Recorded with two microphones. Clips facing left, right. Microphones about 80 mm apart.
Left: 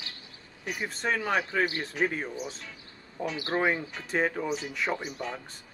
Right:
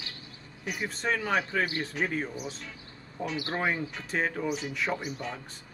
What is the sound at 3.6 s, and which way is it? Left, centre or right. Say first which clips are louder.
Speech: left 3 dB; centre.